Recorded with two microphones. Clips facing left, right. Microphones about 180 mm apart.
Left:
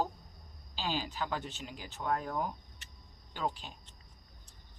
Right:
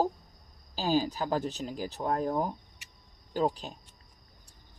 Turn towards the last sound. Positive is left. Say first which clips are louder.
# right 8 dB
turn(degrees=-40)  # may be behind; listen again after turning